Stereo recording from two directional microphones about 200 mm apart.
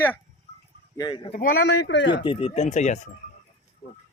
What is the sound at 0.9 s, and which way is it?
Speech, 20° left (ahead or behind).